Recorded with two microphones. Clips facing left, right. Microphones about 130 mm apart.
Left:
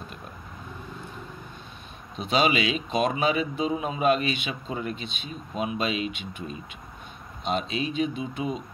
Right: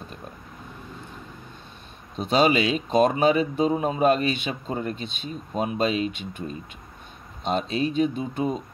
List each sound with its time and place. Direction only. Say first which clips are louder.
2.1 s speech: right 3 dB; 40° right (ahead or behind)